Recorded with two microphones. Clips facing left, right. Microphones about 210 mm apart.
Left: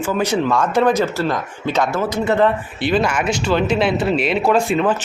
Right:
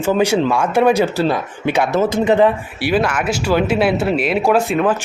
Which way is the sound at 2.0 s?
25° right (ahead or behind).